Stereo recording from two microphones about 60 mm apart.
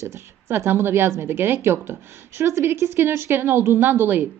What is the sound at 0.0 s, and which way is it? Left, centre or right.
A woman's voice, right.